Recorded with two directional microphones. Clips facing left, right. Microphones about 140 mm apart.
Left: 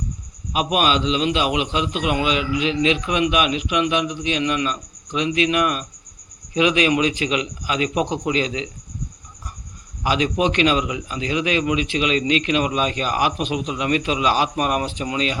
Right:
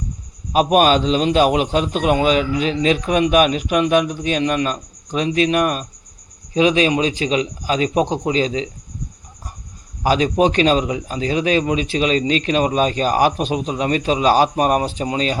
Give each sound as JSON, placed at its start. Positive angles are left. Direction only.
{"t": 0.5, "sound": "a man's voice", "side_deg": -40}
{"t": 10.0, "sound": "a man's voice", "side_deg": -40}